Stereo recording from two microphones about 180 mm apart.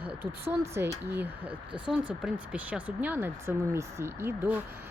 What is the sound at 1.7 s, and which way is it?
Speech, 25° right (ahead or behind).